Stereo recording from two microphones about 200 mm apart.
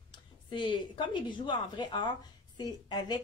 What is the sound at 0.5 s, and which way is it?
Speech, 25° left (ahead or behind).